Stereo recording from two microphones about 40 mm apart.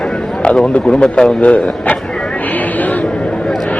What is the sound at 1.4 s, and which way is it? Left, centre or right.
Speech, left.